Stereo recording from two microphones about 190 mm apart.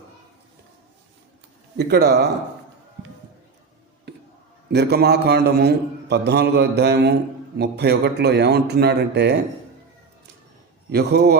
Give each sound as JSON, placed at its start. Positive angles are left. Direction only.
{"t": 1.7, "sound": "a man's voice", "side_deg": -60}
{"t": 4.7, "sound": "a man's voice", "side_deg": -60}
{"t": 10.9, "sound": "a man's voice", "side_deg": -60}